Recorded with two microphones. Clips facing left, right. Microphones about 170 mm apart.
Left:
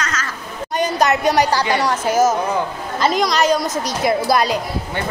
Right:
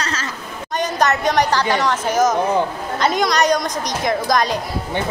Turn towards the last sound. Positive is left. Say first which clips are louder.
# left 2 dB
turn(degrees=10)  # may be behind; listen again after turning